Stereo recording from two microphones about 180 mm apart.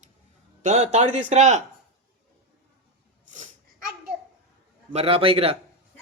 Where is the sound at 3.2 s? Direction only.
45° right (ahead or behind).